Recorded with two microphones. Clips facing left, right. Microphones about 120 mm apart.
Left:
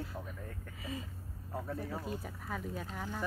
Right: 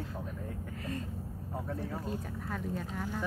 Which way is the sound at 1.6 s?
Centre (ahead or behind).